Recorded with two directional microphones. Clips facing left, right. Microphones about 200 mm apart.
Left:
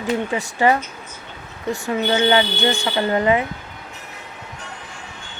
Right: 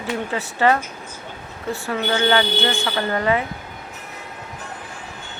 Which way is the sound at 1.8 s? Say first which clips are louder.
Left 2 dB; 15° left (ahead or behind).